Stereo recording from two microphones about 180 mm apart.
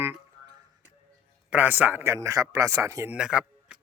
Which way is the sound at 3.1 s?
5° right (ahead or behind).